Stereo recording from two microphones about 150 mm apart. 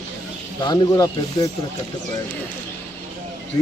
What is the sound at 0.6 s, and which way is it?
Speech, 25° left (ahead or behind).